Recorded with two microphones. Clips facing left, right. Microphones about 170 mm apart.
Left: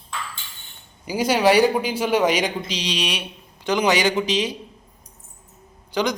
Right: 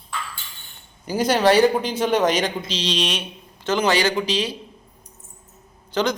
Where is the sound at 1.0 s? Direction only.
10° left (ahead or behind).